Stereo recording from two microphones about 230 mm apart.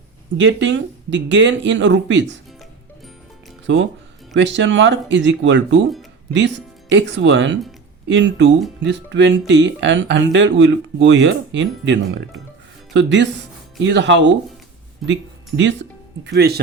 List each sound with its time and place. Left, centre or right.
0.4 s speech: right
3.7 s speech: right